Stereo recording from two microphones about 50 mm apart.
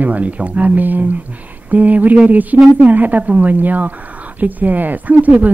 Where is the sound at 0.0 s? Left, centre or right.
Right.